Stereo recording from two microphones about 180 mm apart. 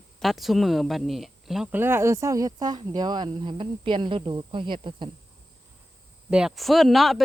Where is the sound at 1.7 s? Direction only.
10° right (ahead or behind).